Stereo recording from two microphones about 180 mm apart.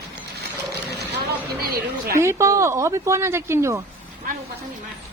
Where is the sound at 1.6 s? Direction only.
55° right (ahead or behind).